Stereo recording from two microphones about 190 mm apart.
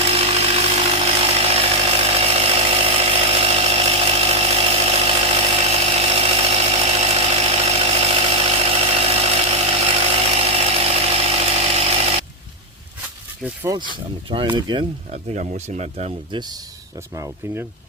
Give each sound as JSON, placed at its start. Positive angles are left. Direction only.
{"t": 0.0, "sound": "sawing", "side_deg": -30}
{"t": 1.0, "sound": "chainsaw", "side_deg": -30}
{"t": 13.4, "sound": "a sound", "side_deg": -10}
{"t": 14.3, "sound": "speech", "side_deg": -25}
{"t": 15.1, "sound": "speech", "side_deg": -35}